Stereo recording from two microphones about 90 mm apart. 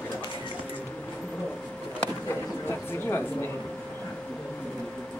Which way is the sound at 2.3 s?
25° left (ahead or behind).